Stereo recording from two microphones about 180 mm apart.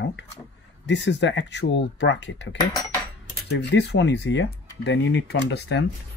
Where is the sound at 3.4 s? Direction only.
70° left (ahead or behind).